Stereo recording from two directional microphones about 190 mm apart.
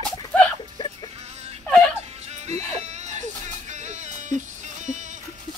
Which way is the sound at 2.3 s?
35° right (ahead or behind).